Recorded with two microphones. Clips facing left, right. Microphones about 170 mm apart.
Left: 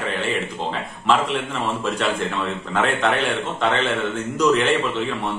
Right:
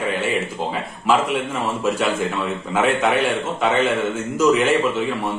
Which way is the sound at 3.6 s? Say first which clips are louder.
Right 3 dB; 5° right (ahead or behind).